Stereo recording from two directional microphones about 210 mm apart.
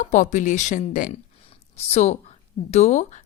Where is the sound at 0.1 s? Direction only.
35° left (ahead or behind).